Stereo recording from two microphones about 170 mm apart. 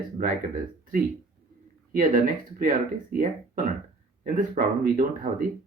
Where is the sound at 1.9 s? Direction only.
55° right (ahead or behind).